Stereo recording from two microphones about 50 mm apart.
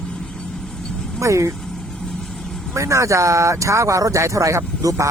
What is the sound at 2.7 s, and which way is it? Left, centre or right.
Speech, right.